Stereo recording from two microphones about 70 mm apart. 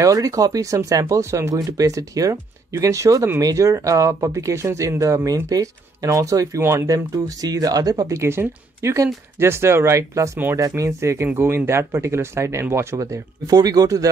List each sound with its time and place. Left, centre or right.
0.0 s speech: right
1.5 s speech: right
6.6 s speech: right
6.9 s speech: right
8.2 s speech: right
13.6 s speech: right